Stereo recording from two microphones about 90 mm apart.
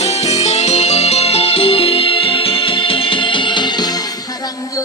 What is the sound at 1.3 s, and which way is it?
Music, 90° left.